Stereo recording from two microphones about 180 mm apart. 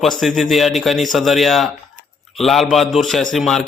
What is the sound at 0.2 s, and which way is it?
A man's voice, centre (ahead or behind).